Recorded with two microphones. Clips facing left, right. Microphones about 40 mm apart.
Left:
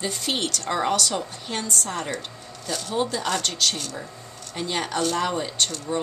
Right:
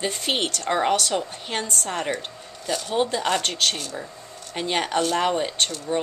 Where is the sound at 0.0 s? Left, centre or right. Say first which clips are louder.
Right 2 dB; right.